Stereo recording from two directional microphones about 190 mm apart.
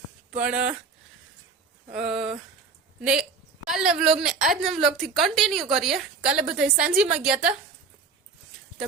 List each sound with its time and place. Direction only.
0.4 s a woman's voice: 5° right (ahead or behind)
1.9 s a woman's voice: centre (ahead or behind)